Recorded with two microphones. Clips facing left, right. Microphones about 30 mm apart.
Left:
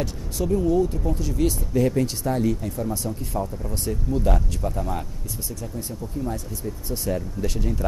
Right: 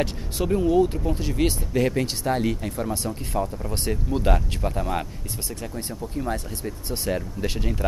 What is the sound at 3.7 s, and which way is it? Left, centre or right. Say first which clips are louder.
Speech: even; right.